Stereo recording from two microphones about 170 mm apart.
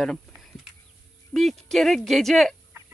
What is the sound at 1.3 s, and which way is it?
Speech, centre (ahead or behind).